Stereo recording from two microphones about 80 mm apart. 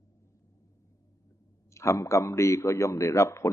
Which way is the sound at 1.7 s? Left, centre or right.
Left.